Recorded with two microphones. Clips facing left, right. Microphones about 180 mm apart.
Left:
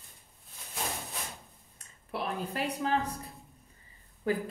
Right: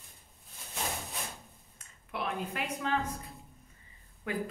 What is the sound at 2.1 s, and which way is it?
Speech, 35° left (ahead or behind).